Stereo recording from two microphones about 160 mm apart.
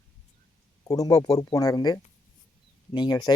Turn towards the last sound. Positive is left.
turn(degrees=30)  # may be behind; listen again after turning